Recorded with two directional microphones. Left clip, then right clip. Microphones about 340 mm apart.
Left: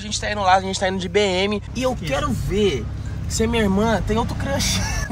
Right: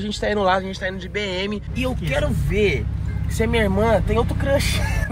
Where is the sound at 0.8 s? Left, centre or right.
Centre.